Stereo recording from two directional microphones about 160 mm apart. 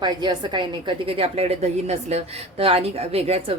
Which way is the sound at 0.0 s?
25° right (ahead or behind).